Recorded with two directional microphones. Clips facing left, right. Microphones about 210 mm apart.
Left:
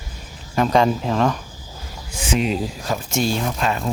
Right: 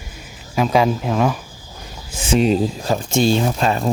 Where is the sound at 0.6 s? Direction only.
5° right (ahead or behind).